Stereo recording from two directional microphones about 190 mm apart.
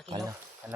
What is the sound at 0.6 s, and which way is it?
Speech, 10° right (ahead or behind).